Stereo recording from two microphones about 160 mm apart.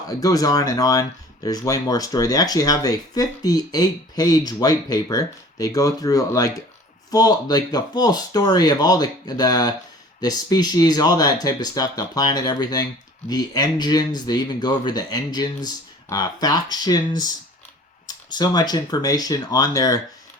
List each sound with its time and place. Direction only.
0.2 s speech: 20° left (ahead or behind)